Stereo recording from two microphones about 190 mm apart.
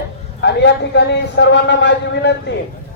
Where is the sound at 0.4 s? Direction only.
65° left (ahead or behind).